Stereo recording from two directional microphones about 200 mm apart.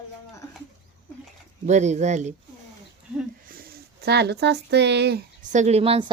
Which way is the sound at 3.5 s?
50° right (ahead or behind).